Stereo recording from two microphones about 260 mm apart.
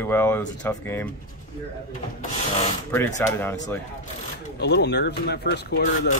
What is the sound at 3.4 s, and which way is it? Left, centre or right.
Speech, centre.